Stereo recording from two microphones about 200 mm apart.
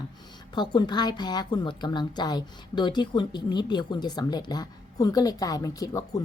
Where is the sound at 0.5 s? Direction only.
20° left (ahead or behind).